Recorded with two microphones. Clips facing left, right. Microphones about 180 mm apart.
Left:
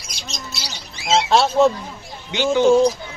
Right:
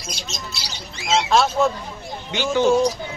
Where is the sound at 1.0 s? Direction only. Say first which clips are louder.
Left 2 dB; 30° left (ahead or behind).